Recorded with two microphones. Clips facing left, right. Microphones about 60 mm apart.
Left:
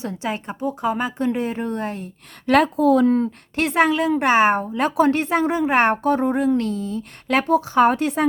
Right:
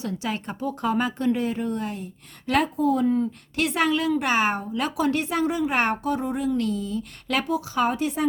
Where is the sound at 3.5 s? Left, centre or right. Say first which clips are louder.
Left 5 dB; left.